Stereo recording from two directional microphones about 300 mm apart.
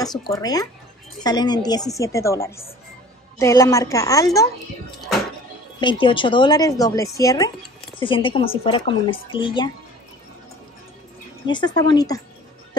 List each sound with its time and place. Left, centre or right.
0.0 s a woman's voice: centre
5.8 s a woman's voice: centre
11.4 s a woman's voice: centre